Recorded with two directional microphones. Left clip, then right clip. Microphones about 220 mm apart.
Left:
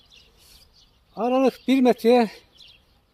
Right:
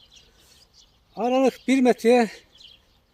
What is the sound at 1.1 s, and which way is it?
A man's voice, 10° left (ahead or behind).